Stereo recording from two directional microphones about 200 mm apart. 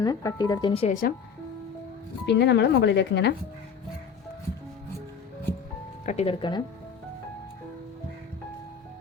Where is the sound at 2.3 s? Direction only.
60° left (ahead or behind).